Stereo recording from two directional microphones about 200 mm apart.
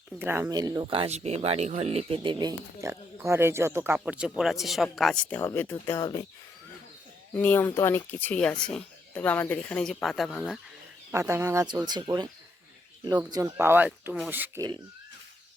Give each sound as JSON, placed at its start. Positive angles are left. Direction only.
{"t": 0.2, "sound": "speech", "side_deg": -10}
{"t": 7.3, "sound": "speech", "side_deg": 10}
{"t": 11.1, "sound": "speech", "side_deg": -15}
{"t": 13.3, "sound": "speech", "side_deg": -15}